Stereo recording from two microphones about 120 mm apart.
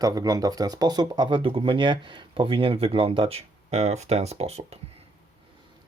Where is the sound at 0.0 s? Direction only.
30° right (ahead or behind); by 4.8 s 60° right (ahead or behind).